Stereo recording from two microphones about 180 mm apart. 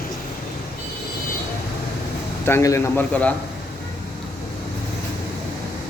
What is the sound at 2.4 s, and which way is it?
Speech, 15° left (ahead or behind).